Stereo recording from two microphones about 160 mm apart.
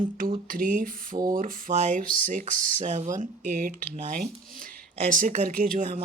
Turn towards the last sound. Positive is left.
turn(degrees=-60)  # may be behind; listen again after turning